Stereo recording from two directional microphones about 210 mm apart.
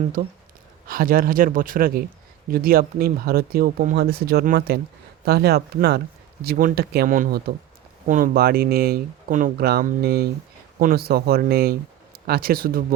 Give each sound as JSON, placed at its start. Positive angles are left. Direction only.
{"t": 0.2, "sound": "speech", "side_deg": -45}